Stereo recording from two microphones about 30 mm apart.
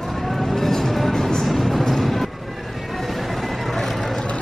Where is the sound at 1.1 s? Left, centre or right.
Centre.